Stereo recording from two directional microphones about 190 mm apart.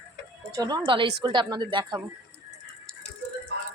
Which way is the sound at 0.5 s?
20° right (ahead or behind).